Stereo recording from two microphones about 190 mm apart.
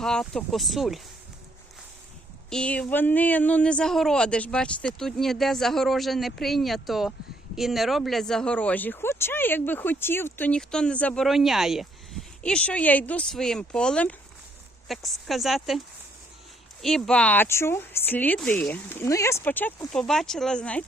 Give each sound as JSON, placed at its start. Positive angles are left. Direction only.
{"t": 0.0, "sound": "speech", "side_deg": 5}
{"t": 2.5, "sound": "speech", "side_deg": 5}
{"t": 16.8, "sound": "speech", "side_deg": 5}